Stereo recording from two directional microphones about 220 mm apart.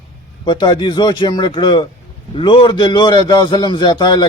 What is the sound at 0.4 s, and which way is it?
A man's voice, 20° left (ahead or behind).